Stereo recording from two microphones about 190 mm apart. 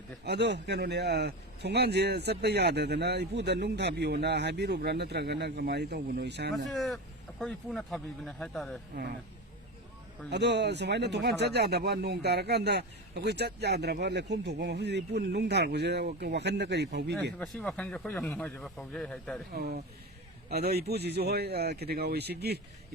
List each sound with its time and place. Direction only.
0.3 s speech: 60° right (ahead or behind)
6.7 s speech: centre (ahead or behind)
10.2 s speech: 60° right (ahead or behind)
17.4 s speech: centre (ahead or behind)
19.5 s speech: 50° right (ahead or behind)